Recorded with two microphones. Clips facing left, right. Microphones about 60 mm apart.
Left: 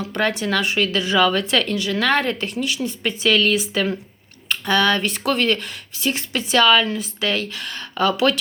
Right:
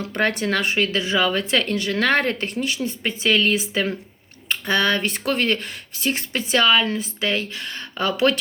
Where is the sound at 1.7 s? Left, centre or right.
Right.